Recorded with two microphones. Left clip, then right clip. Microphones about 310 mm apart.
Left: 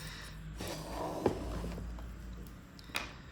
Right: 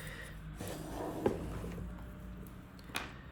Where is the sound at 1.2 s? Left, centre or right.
Left.